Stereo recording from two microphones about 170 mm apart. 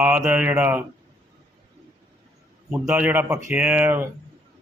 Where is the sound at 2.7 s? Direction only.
10° right (ahead or behind).